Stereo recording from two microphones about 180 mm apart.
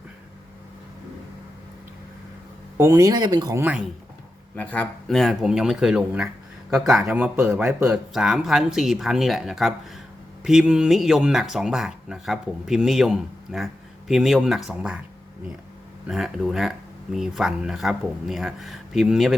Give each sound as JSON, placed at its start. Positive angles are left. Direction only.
{"t": 2.7, "sound": "speech", "side_deg": -15}
{"t": 4.5, "sound": "speech", "side_deg": 10}
{"t": 16.0, "sound": "speech", "side_deg": 0}